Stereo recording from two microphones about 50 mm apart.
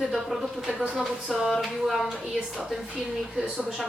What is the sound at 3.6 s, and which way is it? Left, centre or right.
Speech, centre.